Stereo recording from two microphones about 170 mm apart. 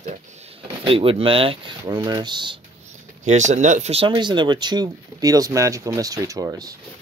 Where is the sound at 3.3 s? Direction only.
45° right (ahead or behind); by 6.7 s 20° right (ahead or behind).